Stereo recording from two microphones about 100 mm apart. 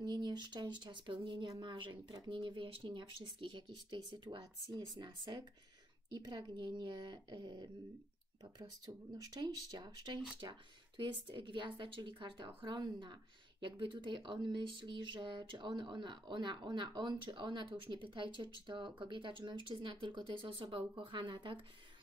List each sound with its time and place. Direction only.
0.0 s speech: 45° right (ahead or behind)
11.0 s speech: 55° right (ahead or behind)
12.7 s speech: 45° right (ahead or behind)